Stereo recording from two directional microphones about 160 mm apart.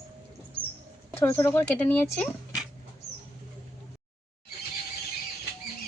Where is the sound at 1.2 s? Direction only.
15° left (ahead or behind).